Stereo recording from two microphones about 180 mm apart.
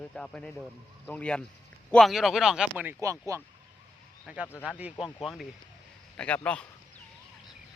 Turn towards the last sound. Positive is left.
turn(degrees=5)  # may be behind; listen again after turning